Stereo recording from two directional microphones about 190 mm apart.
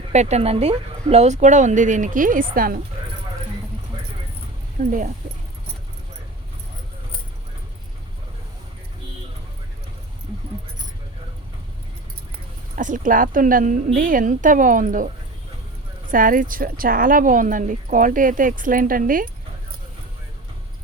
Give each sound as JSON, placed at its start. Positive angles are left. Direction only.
{"t": 0.1, "sound": "speech", "side_deg": -35}
{"t": 4.8, "sound": "speech", "side_deg": -45}
{"t": 12.7, "sound": "speech", "side_deg": -45}